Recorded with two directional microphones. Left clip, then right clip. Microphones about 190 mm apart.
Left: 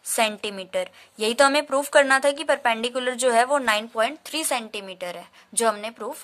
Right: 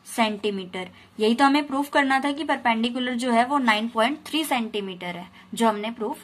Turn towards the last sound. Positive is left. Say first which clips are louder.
# even
turn(degrees=40)  # may be behind; listen again after turning